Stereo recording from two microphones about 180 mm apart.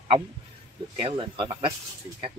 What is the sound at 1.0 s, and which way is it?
Speech, 30° right (ahead or behind).